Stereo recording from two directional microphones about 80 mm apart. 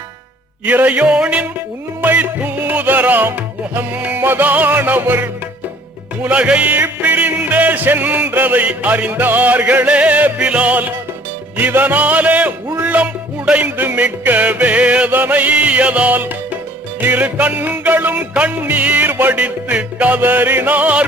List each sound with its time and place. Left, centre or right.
0.6 s music: centre
6.2 s music: centre